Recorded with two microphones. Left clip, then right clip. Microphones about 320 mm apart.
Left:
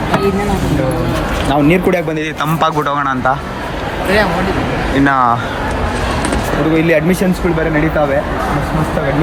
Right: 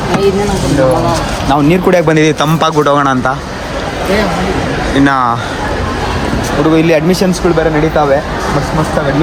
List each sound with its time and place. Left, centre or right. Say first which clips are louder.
1.6 s a man's voice: right 6 dB; centre
4.9 s a man's voice: right 1 dB; centre
6.7 s speech: right 2 dB; centre